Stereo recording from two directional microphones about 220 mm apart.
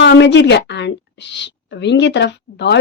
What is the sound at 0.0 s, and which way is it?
A woman's voice, 50° left (ahead or behind).